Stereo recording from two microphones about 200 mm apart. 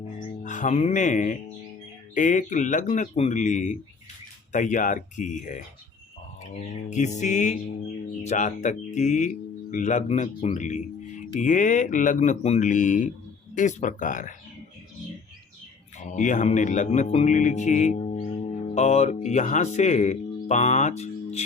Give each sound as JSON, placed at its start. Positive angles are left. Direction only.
{"t": 0.2, "sound": "speech", "side_deg": 40}
{"t": 6.9, "sound": "speech", "side_deg": 35}
{"t": 16.0, "sound": "speech", "side_deg": 35}